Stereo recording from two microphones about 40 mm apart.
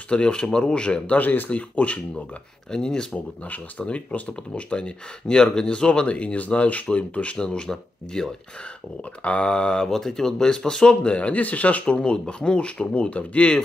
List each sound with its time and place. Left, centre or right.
0.1 s speech: left
1.1 s speech: left
2.7 s speech: centre
3.2 s speech: left
3.8 s speech: left; by 8.3 s centre
9.2 s speech: left
9.8 s speech: centre; by 11.8 s left
11.8 s speech: left